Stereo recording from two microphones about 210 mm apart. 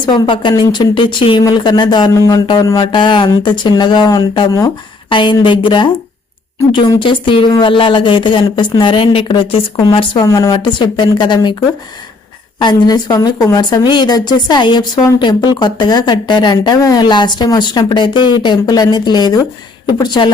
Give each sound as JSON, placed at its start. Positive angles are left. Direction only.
{"t": 0.0, "sound": "speech", "side_deg": 20}
{"t": 12.5, "sound": "speech", "side_deg": 20}